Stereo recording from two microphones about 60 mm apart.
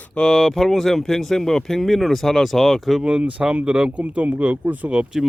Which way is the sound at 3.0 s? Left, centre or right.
Centre.